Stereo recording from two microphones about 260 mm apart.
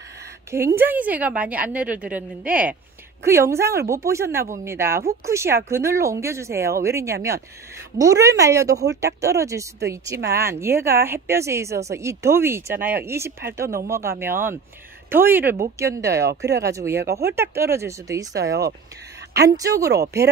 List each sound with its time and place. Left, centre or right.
0.5 s a woman's voice: centre
16.3 s speech: right
16.6 s speech: centre
18.4 s speech: right
19.5 s speech: centre